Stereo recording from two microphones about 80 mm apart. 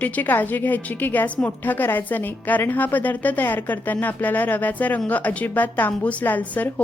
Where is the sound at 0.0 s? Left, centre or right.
Left.